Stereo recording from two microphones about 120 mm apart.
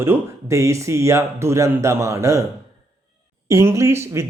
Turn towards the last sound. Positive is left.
turn(degrees=-25)  # may be behind; listen again after turning